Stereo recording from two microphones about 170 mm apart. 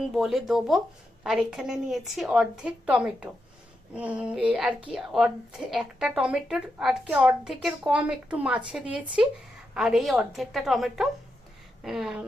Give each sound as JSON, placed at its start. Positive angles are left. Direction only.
{"t": 0.0, "sound": "a woman's voice", "side_deg": 0}